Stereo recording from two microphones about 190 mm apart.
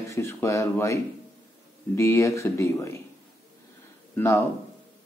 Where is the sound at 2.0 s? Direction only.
15° left (ahead or behind).